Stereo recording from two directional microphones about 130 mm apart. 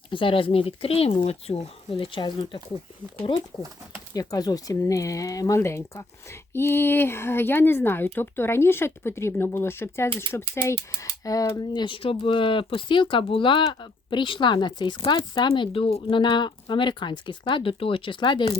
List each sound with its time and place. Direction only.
0.1 s speech: 40° left (ahead or behind)
4.1 s speech: 30° left (ahead or behind)